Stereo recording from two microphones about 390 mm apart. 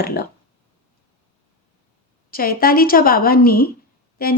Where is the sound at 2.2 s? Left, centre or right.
Left.